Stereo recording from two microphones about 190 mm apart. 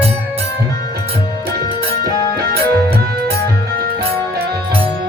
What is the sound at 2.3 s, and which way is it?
Music, 55° right (ahead or behind).